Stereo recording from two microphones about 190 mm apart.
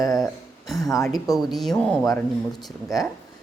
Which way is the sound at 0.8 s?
20° left (ahead or behind).